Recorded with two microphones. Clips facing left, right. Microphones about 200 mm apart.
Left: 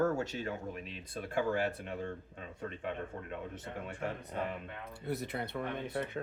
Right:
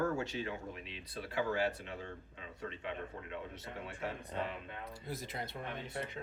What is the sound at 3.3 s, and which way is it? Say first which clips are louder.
A man's voice: left 3 dB; 50° left (ahead or behind).